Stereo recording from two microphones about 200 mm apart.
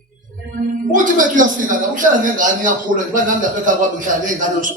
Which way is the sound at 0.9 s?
40° right (ahead or behind).